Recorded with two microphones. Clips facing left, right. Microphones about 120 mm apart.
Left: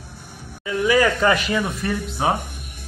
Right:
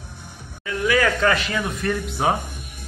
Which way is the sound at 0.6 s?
10° left (ahead or behind).